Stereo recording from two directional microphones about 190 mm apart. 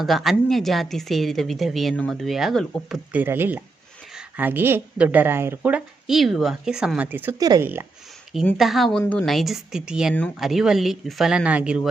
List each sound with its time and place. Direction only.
0.0 s a woman's voice: centre (ahead or behind)
8.3 s a woman's voice: centre (ahead or behind)